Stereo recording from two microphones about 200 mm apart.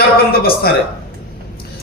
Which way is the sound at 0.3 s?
50° left (ahead or behind).